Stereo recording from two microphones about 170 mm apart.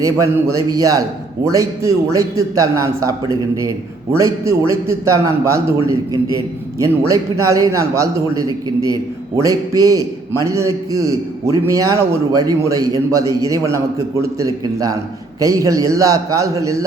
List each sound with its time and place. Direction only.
0.0 s a man's voice: 20° right (ahead or behind)